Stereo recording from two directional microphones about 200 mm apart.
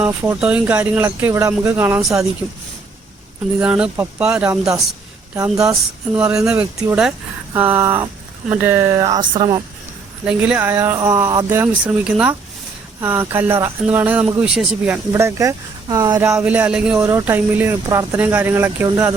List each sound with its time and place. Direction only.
0.0 s speech: 10° right (ahead or behind)
3.6 s speech: 5° right (ahead or behind)
4.4 s speech: 15° right (ahead or behind)
10.2 s speech: 5° right (ahead or behind)
15.1 s speech: 15° right (ahead or behind)